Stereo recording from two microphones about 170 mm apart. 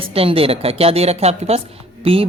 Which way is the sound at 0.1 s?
35° right (ahead or behind).